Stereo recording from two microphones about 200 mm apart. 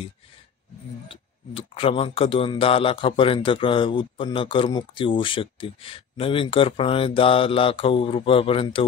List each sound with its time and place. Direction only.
1.0 s speech: 25° left (ahead or behind)